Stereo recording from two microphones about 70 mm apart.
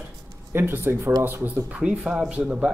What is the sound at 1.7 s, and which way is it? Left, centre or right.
Speech, centre.